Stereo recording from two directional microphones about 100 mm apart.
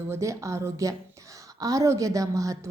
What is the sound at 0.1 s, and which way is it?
A woman's voice, 30° right (ahead or behind).